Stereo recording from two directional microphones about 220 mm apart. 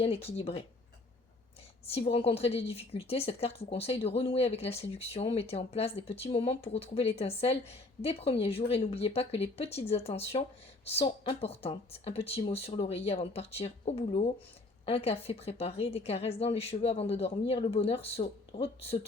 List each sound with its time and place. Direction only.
0.0 s a woman's voice: 25° left (ahead or behind)
1.9 s a woman's voice: 25° left (ahead or behind)